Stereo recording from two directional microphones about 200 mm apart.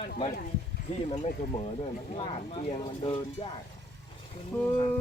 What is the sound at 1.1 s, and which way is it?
A man's voice, 35° left (ahead or behind).